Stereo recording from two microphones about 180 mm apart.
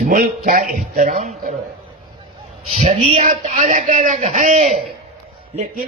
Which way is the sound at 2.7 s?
35° right (ahead or behind).